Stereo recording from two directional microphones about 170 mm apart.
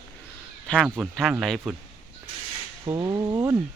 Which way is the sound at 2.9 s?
25° right (ahead or behind).